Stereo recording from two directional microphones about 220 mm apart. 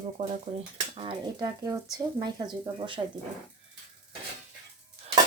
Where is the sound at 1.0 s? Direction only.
20° right (ahead or behind).